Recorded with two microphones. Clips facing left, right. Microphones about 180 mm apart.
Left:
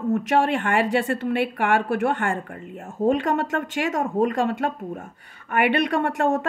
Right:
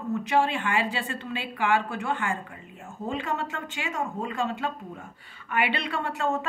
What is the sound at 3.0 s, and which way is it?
A woman's voice, 65° left (ahead or behind).